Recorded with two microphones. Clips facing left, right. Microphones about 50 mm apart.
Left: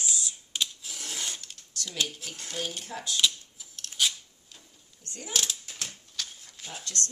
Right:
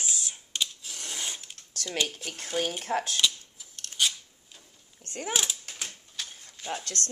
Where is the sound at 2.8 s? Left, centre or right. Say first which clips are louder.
Right 8 dB; right.